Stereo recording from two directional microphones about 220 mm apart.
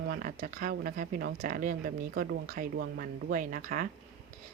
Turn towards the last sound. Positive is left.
turn(degrees=-40)  # may be behind; listen again after turning